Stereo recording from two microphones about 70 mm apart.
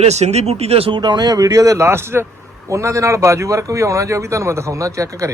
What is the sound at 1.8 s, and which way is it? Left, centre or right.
A man's voice, right.